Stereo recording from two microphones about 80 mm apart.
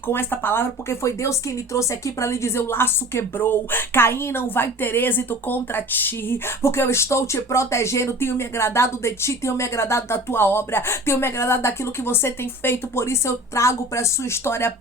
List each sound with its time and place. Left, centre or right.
0.1 s speech: left